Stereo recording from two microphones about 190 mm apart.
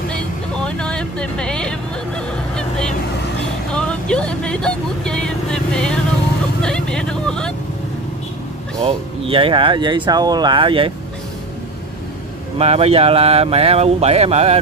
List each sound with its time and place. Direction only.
0.1 s vehicle: 5° left (ahead or behind)
3.7 s speech: 5° left (ahead or behind)
8.8 s speech: 30° right (ahead or behind)
12.5 s speech: 30° right (ahead or behind)